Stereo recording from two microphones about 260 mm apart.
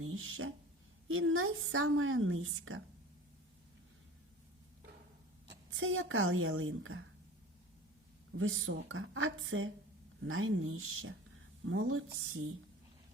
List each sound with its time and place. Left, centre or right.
0.0 s a woman's voice: right
5.7 s a woman's voice: right
8.4 s a woman's voice: right